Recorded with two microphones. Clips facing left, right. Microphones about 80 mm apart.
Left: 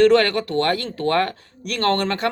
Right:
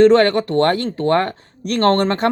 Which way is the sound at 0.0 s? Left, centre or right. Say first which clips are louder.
Right 4 dB; right.